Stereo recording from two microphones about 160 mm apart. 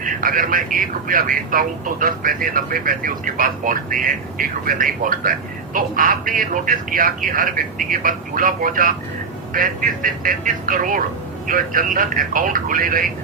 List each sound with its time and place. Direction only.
0.0 s speech: 60° right (ahead or behind)